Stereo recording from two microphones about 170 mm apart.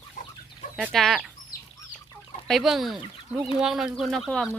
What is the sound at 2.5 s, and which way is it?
Speech, centre (ahead or behind).